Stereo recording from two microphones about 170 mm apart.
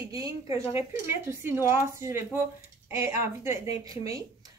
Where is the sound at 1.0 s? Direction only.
15° right (ahead or behind).